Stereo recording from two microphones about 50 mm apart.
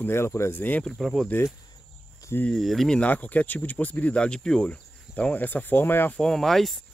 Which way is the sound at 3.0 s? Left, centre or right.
Left.